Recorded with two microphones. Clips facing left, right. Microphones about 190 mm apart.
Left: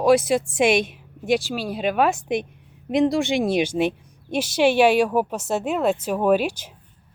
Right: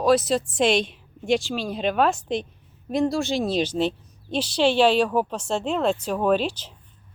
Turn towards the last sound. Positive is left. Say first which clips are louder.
# left 2 dB
turn(degrees=10)  # may be behind; listen again after turning